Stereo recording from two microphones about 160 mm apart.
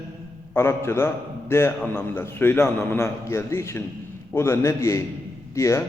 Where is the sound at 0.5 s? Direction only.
15° left (ahead or behind).